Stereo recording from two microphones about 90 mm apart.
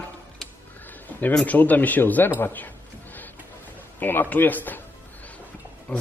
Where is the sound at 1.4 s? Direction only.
20° left (ahead or behind).